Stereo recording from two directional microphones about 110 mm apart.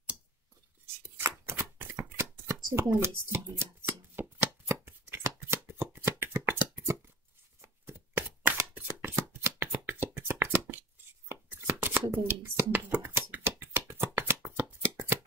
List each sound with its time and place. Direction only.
0.8 s chopping: 20° right (ahead or behind)
1.4 s shuffling cards: 20° right (ahead or behind)
7.6 s shuffling cards: 20° right (ahead or behind)